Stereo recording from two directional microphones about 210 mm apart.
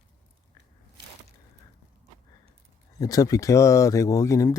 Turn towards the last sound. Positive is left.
turn(degrees=15)  # may be behind; listen again after turning